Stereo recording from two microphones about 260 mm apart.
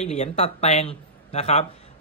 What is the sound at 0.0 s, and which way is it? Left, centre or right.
A man's voice, left.